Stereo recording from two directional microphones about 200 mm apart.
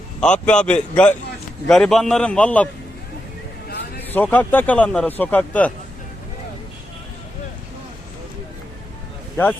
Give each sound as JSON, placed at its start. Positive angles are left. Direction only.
{"t": 0.2, "sound": "a man's voice", "side_deg": 5}
{"t": 4.1, "sound": "speech", "side_deg": 10}